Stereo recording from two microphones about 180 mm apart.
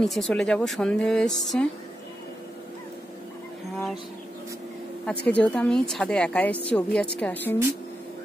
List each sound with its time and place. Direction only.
0.0 s speech: centre (ahead or behind)
5.0 s speech: 5° left (ahead or behind)